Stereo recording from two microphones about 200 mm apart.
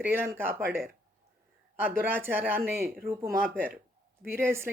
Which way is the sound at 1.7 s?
10° right (ahead or behind).